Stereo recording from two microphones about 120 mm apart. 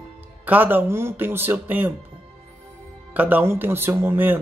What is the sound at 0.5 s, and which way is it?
A man's voice, 15° right (ahead or behind).